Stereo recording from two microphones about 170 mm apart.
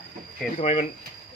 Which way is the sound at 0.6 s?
40° left (ahead or behind).